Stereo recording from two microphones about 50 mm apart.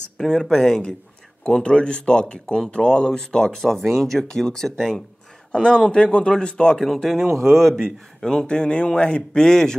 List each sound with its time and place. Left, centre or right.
0.2 s speech: centre
5.5 s speech: centre
6.8 s speech: centre
8.2 s speech: centre